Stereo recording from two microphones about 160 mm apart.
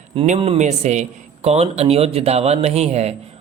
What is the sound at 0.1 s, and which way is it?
Speech, 35° right (ahead or behind).